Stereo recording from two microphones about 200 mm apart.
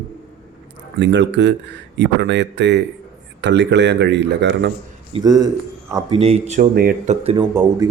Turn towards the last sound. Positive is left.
turn(degrees=-20)  # may be behind; listen again after turning